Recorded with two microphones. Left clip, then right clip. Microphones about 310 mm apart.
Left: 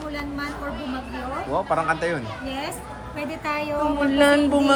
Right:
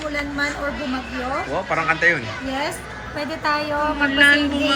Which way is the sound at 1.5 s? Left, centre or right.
Centre.